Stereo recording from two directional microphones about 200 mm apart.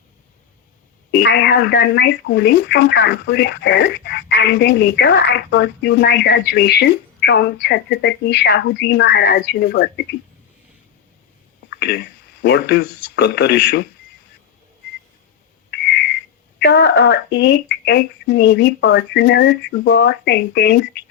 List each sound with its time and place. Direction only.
1.1 s speech: 60° left (ahead or behind)
11.8 s speech: 55° left (ahead or behind)
16.6 s speech: 60° left (ahead or behind)